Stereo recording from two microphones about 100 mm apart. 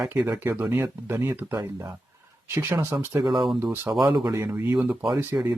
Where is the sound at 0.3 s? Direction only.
20° right (ahead or behind).